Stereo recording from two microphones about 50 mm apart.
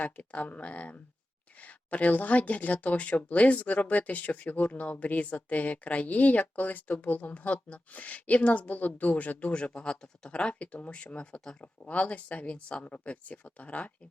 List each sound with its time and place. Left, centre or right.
0.0 s speech: left